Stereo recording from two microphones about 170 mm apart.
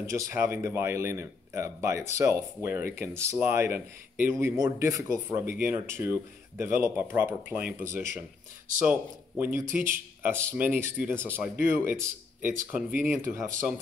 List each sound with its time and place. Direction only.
0.0 s speech: 15° right (ahead or behind)
9.4 s speech: 15° right (ahead or behind)